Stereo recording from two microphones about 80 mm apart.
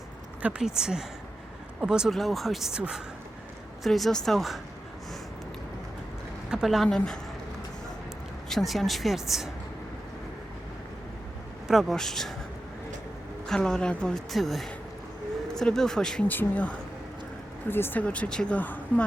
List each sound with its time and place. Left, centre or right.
0.6 s a woman's voice: centre
3.8 s a woman's voice: centre
6.5 s a woman's voice: centre
6.8 s a woman's voice: centre
8.4 s a woman's voice: centre
11.7 s a woman's voice: centre
13.5 s a woman's voice: centre
16.2 s speech: left
18.0 s a woman's voice: centre